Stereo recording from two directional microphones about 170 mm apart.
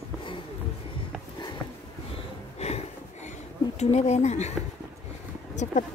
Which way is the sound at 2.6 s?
40° left (ahead or behind).